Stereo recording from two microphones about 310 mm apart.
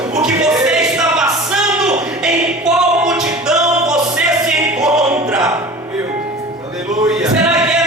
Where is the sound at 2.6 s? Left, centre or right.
Centre.